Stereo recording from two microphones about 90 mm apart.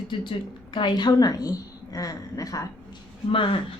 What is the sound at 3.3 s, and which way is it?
Speech, 70° left (ahead or behind).